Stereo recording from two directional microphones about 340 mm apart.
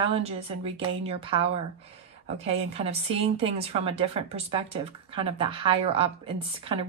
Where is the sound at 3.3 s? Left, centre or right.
Centre.